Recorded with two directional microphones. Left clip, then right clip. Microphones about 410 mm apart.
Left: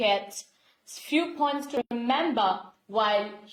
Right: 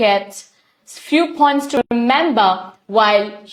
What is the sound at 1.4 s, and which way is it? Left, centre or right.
A woman's voice, right.